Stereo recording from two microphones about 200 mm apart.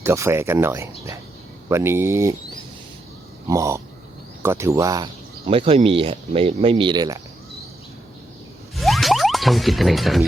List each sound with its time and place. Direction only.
0.0 s speech: 15° right (ahead or behind)
3.4 s a sound: 15° right (ahead or behind)
4.4 s speech: 15° right (ahead or behind)
5.5 s speech: 30° right (ahead or behind)
8.7 s zipper: centre (ahead or behind)